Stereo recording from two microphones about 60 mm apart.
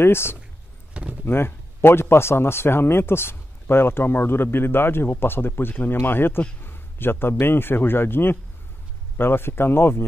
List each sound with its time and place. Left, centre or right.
0.0 s a man's voice: left